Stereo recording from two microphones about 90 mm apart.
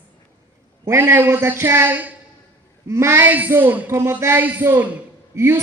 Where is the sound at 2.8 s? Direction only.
30° right (ahead or behind).